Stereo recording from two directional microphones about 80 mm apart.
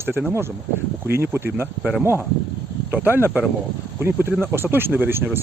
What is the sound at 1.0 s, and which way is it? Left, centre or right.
Speech, right.